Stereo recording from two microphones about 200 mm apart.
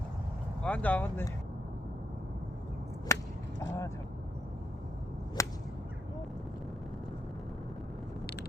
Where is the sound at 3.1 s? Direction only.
15° left (ahead or behind).